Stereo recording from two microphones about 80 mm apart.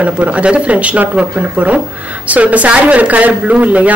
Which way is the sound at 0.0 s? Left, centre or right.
Centre.